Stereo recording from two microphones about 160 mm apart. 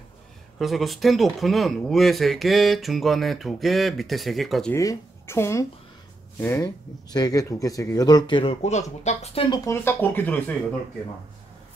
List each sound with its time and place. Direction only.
0.6 s speech: centre (ahead or behind)
4.7 s speech: 15° left (ahead or behind)
8.6 s speech: 45° left (ahead or behind)
9.7 s speech: 15° left (ahead or behind)